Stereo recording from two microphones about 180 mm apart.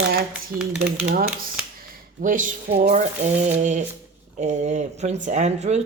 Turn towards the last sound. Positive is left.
turn(degrees=-40)  # may be behind; listen again after turning